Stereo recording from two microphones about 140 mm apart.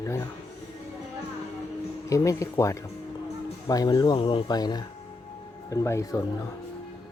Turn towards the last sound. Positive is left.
turn(degrees=20)  # may be behind; listen again after turning